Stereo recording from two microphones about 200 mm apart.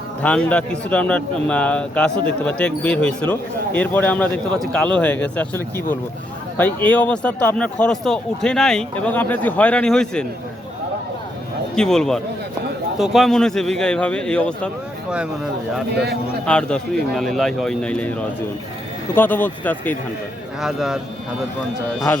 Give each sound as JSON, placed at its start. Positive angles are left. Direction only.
{"t": 0.2, "sound": "a man's voice", "side_deg": 5}
{"t": 11.7, "sound": "a man's voice", "side_deg": 5}
{"t": 15.9, "sound": "a man's voice", "side_deg": -55}
{"t": 16.5, "sound": "a man's voice", "side_deg": 5}
{"t": 19.1, "sound": "speech", "side_deg": 10}
{"t": 20.6, "sound": "a man's voice", "side_deg": 0}